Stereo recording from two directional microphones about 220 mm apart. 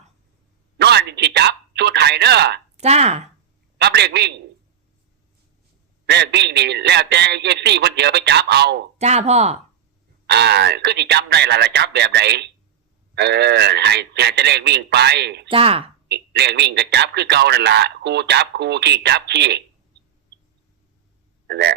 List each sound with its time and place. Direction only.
0.8 s a sound: 50° right (ahead or behind)
2.7 s speech: 30° right (ahead or behind)
3.8 s a man's voice: 50° right (ahead or behind)
6.1 s a man's voice: 50° right (ahead or behind)
9.0 s speech: 30° right (ahead or behind)
10.2 s a man's voice: 50° right (ahead or behind)
15.4 s speech: 25° right (ahead or behind)
16.0 s a man's voice: 50° right (ahead or behind)
21.4 s speech: 50° right (ahead or behind)